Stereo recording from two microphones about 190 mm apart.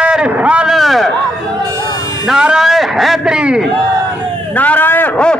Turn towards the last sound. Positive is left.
turn(degrees=10)  # may be behind; listen again after turning